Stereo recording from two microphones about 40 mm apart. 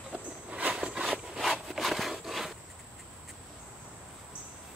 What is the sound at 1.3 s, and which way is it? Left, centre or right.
Rub, centre.